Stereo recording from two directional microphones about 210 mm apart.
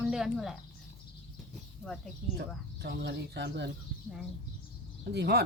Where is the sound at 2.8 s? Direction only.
55° right (ahead or behind).